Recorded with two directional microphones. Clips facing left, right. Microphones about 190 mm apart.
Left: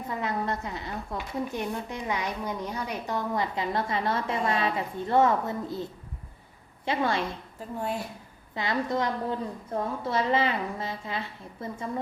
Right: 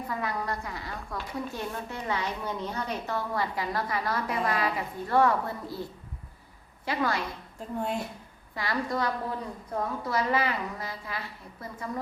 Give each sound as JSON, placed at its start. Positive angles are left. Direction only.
{"t": 0.1, "sound": "a woman's voice", "side_deg": 25}
{"t": 7.8, "sound": "a woman's voice", "side_deg": 5}
{"t": 8.5, "sound": "a woman's voice", "side_deg": 20}